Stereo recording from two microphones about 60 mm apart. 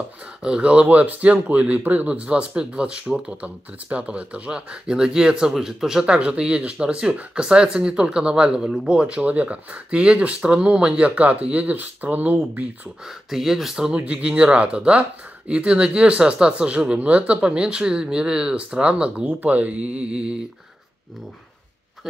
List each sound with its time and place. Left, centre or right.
0.4 s speech: centre
13.3 s speech: centre